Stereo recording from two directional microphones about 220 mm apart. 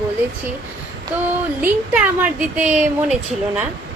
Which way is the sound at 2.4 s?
5° right (ahead or behind).